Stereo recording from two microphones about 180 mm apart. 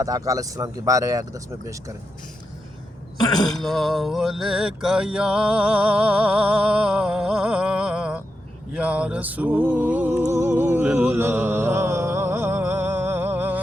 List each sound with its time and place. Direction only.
0.0 s speech: 20° right (ahead or behind)
3.2 s speech: 20° left (ahead or behind)
3.6 s music: centre (ahead or behind)